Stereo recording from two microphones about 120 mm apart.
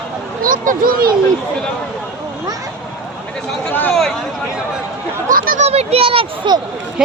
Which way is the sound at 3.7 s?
15° left (ahead or behind).